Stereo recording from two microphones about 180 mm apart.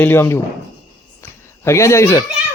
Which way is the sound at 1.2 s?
15° left (ahead or behind).